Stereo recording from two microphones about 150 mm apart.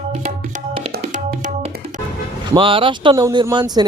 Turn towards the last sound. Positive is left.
turn(degrees=-30)  # may be behind; listen again after turning